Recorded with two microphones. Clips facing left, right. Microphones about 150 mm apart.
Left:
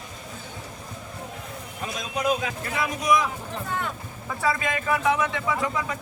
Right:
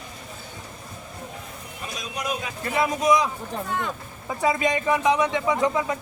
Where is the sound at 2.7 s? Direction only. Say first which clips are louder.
Right 3 dB; 25° right (ahead or behind).